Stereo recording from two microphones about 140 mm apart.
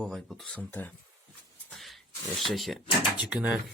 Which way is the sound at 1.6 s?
Centre (ahead or behind).